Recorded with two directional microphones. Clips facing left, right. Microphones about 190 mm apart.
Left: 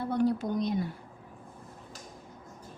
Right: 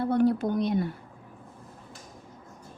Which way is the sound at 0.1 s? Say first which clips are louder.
Right 3 dB; 60° right (ahead or behind).